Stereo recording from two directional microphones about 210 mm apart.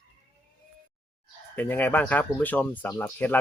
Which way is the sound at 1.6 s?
10° left (ahead or behind).